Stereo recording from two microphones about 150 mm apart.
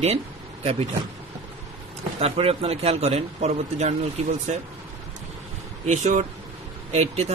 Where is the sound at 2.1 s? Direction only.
40° right (ahead or behind).